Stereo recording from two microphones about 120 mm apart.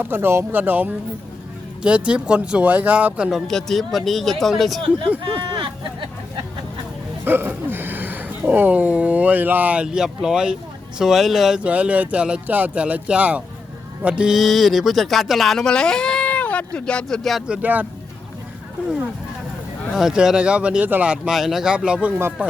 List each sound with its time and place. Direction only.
0.0 s speech: 20° right (ahead or behind); by 4.8 s centre (ahead or behind)
5.2 s speech: 40° right (ahead or behind)
7.3 s speech: 15° right (ahead or behind)
19.9 s speech: 5° right (ahead or behind)